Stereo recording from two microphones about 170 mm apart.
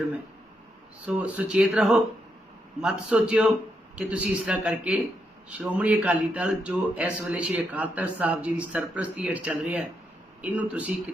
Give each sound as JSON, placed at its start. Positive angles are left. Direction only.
{"t": 1.0, "sound": "speech", "side_deg": -10}